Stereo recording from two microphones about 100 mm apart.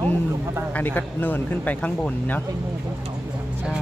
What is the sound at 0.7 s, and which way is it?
Speech, 15° left (ahead or behind).